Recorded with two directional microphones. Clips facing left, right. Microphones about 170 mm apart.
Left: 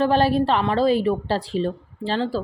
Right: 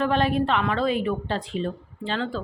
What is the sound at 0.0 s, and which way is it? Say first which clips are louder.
A woman's voice: left 4 dB; 35° left (ahead or behind).